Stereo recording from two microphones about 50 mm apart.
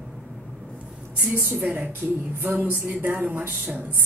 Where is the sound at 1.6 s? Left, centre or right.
Right.